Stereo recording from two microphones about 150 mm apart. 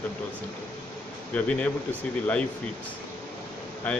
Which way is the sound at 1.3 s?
10° left (ahead or behind).